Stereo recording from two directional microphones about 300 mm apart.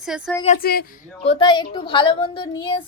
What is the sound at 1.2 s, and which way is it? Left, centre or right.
A woman's voice, centre.